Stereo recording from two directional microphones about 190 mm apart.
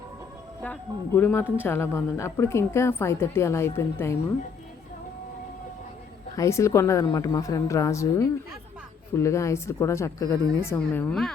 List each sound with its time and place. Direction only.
0.6 s a woman's voice: 10° left (ahead or behind)
6.3 s a woman's voice: 15° left (ahead or behind)